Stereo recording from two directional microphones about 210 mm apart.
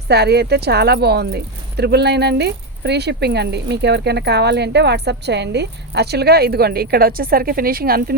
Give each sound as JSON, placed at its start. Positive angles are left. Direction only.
{"t": 0.1, "sound": "speech", "side_deg": -50}